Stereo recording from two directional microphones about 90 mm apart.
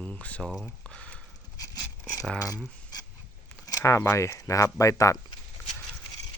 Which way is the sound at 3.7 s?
40° left (ahead or behind).